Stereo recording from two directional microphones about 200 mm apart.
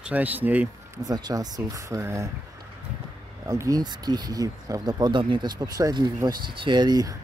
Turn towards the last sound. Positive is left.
turn(degrees=-20)  # may be behind; listen again after turning